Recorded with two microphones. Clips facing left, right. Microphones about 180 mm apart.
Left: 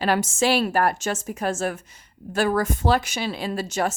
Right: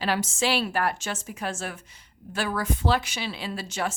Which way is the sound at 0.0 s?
50° left (ahead or behind).